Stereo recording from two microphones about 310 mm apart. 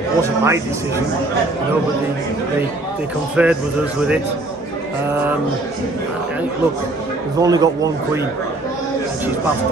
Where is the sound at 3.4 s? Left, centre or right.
Centre.